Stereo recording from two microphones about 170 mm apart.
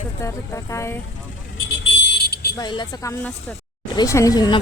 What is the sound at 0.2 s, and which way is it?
Speech, 15° left (ahead or behind).